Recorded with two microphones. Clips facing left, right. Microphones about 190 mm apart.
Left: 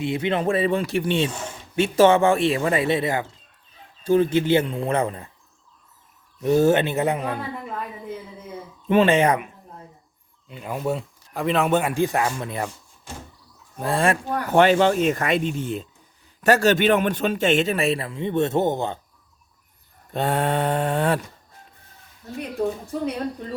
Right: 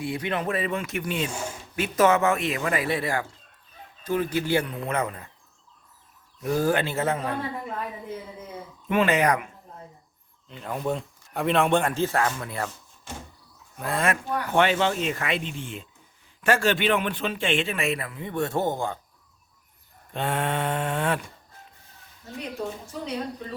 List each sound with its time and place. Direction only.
0.0 s speech: 25° left (ahead or behind)
1.3 s speech: 10° right (ahead or behind)
1.7 s speech: 30° left (ahead or behind)
6.4 s speech: 25° left (ahead or behind)
8.9 s speech: 30° left (ahead or behind)
10.5 s speech: 10° left (ahead or behind)
13.7 s a man's voice: 30° left (ahead or behind)
20.1 s a man's voice: 40° left (ahead or behind)